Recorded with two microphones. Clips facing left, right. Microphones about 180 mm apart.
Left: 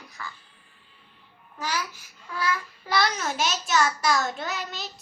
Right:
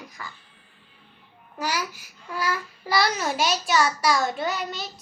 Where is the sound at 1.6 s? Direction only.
10° right (ahead or behind).